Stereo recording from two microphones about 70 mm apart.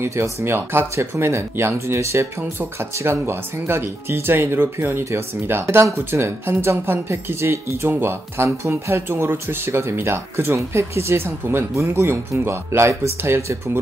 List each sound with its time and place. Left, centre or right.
0.0 s speech: right